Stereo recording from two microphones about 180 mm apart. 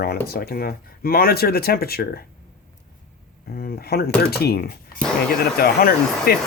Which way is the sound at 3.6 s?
60° left (ahead or behind).